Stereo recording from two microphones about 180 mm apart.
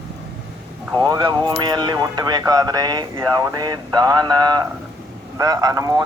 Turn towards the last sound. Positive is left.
turn(degrees=-20)  # may be behind; listen again after turning